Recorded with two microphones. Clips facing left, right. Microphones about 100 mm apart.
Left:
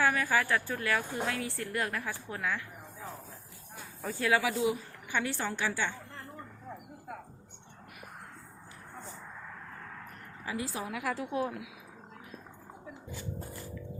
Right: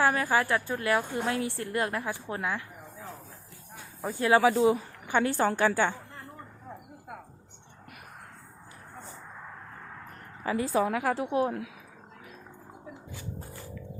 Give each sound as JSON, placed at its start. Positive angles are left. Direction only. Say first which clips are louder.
{"t": 0.0, "sound": "a woman's voice", "louder": "right 3 dB", "side_deg": -30}
{"t": 4.0, "sound": "a woman's voice", "louder": "right 4 dB", "side_deg": -20}
{"t": 4.3, "sound": "a woman's voice", "louder": "right 7 dB", "side_deg": -40}
{"t": 10.4, "sound": "a woman's voice", "louder": "right 10 dB", "side_deg": -50}
{"t": 11.0, "sound": "a woman's voice", "louder": "right 6 dB", "side_deg": -30}